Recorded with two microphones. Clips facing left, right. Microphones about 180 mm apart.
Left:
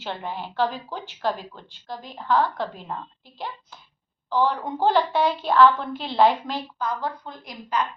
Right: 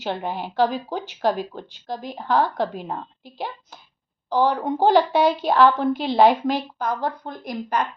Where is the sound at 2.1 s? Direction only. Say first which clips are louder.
Right 1 dB; 35° right (ahead or behind).